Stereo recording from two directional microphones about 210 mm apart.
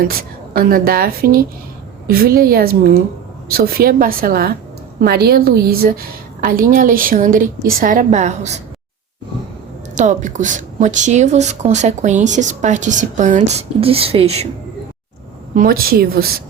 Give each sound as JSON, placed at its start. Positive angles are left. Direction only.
{"t": 0.0, "sound": "a woman's voice", "side_deg": -45}
{"t": 9.9, "sound": "a woman's voice", "side_deg": -35}
{"t": 15.5, "sound": "a woman's voice", "side_deg": -45}